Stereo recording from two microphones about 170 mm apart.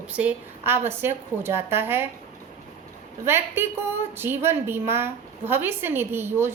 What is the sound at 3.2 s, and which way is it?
A woman's voice, 15° right (ahead or behind).